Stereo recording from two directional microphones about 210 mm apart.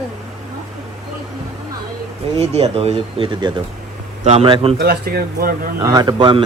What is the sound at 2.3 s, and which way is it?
Speech, 30° right (ahead or behind).